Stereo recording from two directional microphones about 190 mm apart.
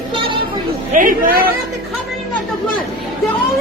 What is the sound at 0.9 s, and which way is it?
Speech, 45° right (ahead or behind).